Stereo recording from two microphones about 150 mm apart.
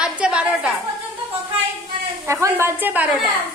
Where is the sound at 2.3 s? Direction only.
15° right (ahead or behind).